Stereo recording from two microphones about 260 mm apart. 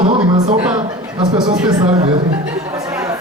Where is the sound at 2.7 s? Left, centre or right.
Centre.